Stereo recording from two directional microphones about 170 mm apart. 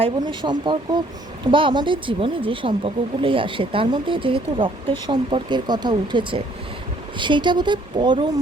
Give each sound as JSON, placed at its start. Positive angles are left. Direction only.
{"t": 0.0, "sound": "speech", "side_deg": -30}